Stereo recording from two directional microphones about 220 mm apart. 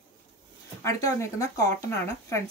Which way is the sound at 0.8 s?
15° left (ahead or behind).